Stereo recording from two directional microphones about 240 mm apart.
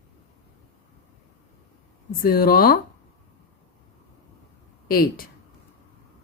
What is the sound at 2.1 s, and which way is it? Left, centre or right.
Speech, left.